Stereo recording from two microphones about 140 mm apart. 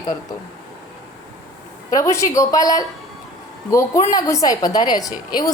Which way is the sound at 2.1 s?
20° left (ahead or behind).